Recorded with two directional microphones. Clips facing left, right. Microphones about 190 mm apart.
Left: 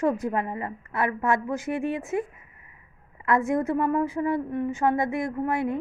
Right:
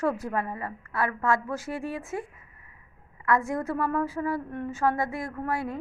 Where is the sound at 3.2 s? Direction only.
20° left (ahead or behind).